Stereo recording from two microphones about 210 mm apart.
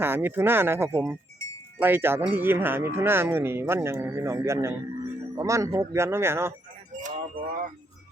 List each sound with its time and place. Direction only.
0.0 s speech: 10° right (ahead or behind)
7.0 s wind chime: 40° right (ahead or behind)